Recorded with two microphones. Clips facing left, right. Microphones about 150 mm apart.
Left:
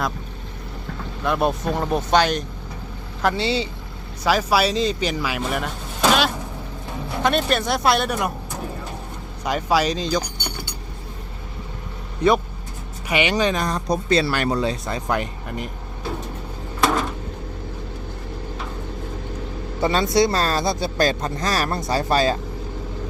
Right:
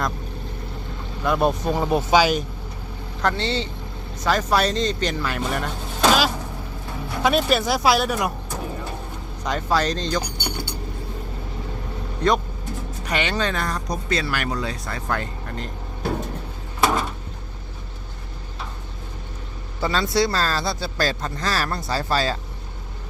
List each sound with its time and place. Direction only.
1.2 s speech: centre (ahead or behind)
3.2 s speech: 10° left (ahead or behind)
9.4 s speech: 10° left (ahead or behind)
13.1 s speech: 10° left (ahead or behind)
16.8 s a sound: 5° right (ahead or behind)
19.8 s speech: 20° left (ahead or behind)